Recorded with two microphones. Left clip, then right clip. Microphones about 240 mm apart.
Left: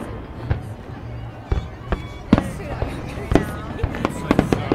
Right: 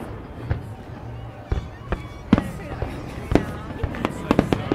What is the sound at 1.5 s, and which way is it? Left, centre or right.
Fireworks, centre.